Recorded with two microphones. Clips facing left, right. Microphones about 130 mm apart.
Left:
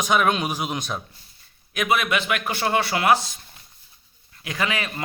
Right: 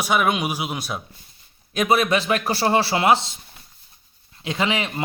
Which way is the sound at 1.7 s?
35° right (ahead or behind).